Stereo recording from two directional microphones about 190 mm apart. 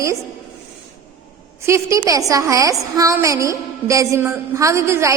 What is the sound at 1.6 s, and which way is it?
A woman's voice, 15° right (ahead or behind).